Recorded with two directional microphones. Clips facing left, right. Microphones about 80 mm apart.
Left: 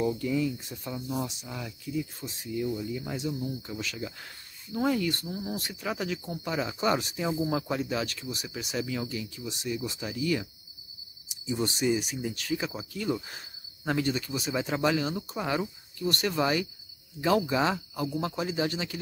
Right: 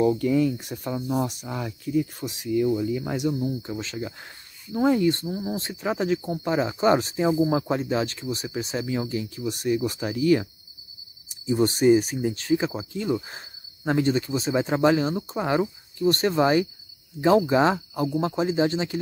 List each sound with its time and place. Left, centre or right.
0.0 s speech: right
3.3 s speech: right